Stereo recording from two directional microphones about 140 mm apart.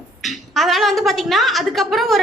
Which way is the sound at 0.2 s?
Centre (ahead or behind).